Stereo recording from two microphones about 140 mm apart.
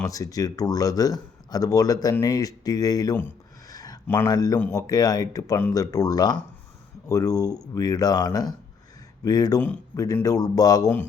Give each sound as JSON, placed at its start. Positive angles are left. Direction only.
{"t": 0.0, "sound": "speech", "side_deg": 25}
{"t": 3.7, "sound": "a sound", "side_deg": 25}
{"t": 4.0, "sound": "speech", "side_deg": 15}
{"t": 4.3, "sound": "speech", "side_deg": 25}
{"t": 9.6, "sound": "speech", "side_deg": 10}
{"t": 10.2, "sound": "speech", "side_deg": 25}